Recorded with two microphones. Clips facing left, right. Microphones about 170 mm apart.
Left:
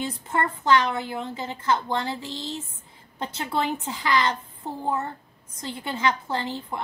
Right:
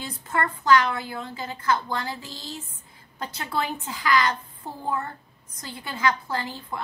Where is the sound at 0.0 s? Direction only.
25° left (ahead or behind).